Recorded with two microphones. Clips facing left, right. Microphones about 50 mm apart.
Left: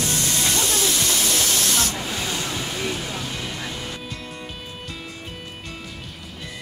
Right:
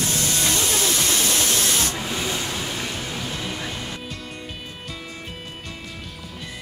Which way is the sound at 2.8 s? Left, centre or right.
Centre.